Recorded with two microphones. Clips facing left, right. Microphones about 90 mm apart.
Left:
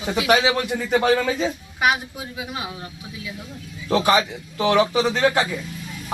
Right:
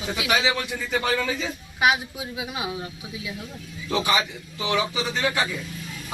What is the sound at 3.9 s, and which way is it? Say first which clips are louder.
A man's voice: left 5 dB; 50° left (ahead or behind).